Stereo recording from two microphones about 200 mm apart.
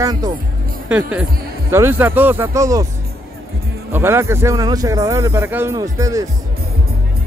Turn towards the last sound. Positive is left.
turn(degrees=-15)  # may be behind; listen again after turning